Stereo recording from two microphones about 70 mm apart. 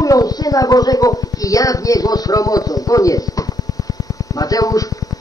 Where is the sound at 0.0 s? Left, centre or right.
Left.